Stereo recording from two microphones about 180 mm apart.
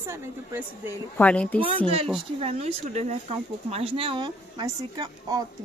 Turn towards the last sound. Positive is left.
turn(degrees=-20)  # may be behind; listen again after turning